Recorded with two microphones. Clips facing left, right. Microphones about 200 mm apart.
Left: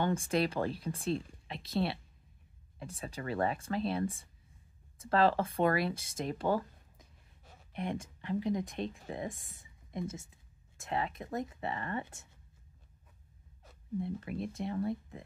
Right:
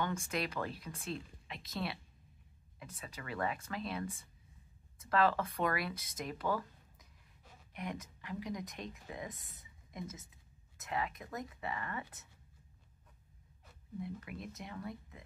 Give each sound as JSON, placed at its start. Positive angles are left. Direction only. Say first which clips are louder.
{"t": 0.0, "sound": "speech", "louder": "left 7 dB", "side_deg": 30}
{"t": 13.9, "sound": "speech", "louder": "left 7 dB", "side_deg": 30}